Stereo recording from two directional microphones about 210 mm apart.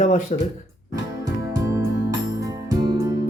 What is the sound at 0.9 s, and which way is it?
Music, 15° right (ahead or behind).